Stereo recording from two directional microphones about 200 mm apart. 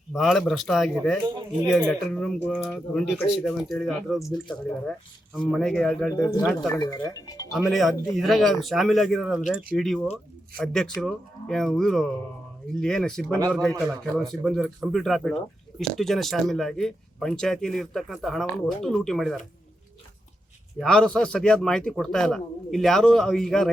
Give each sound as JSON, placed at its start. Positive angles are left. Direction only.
{"t": 0.1, "sound": "speech", "side_deg": 0}
{"t": 6.7, "sound": "speech", "side_deg": 15}
{"t": 7.7, "sound": "speech", "side_deg": 0}
{"t": 20.7, "sound": "speech", "side_deg": 5}